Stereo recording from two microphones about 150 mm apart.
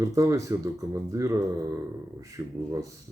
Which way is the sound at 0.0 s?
20° right (ahead or behind).